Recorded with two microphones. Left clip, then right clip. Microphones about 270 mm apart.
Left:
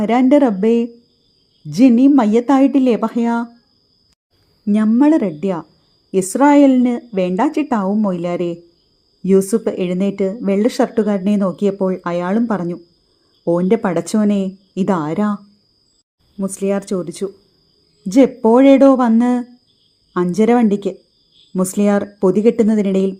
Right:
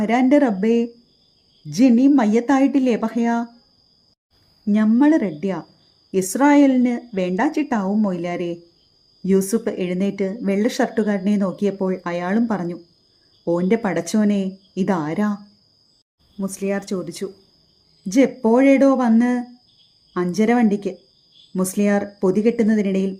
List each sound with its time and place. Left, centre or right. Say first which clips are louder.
0.0 s a woman's voice: left 4 dB; centre
4.6 s a woman's voice: left 3 dB; centre
16.4 s a woman's voice: left 5 dB; centre